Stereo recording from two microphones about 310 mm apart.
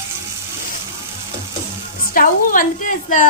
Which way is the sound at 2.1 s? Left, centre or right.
Left.